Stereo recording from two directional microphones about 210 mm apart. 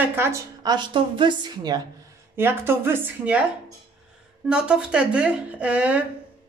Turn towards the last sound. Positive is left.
turn(degrees=-5)  # may be behind; listen again after turning